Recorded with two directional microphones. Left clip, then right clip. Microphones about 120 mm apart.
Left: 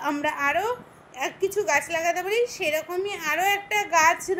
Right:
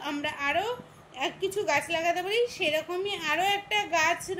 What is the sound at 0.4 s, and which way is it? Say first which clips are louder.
Speech: left 2 dB; 40° left (ahead or behind).